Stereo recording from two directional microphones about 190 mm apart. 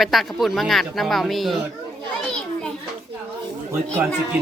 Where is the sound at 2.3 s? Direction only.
5° left (ahead or behind).